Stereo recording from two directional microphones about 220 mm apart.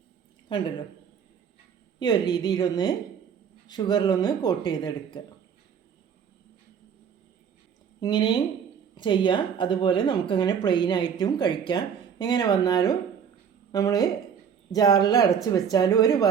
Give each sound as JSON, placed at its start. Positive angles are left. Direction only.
{"t": 0.4, "sound": "a woman's voice", "side_deg": 20}
{"t": 2.0, "sound": "a woman's voice", "side_deg": 20}
{"t": 8.0, "sound": "a woman's voice", "side_deg": 20}